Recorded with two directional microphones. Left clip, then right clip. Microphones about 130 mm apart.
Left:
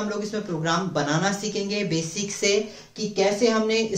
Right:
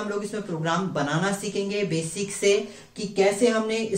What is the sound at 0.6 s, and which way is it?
Speech, 35° left (ahead or behind).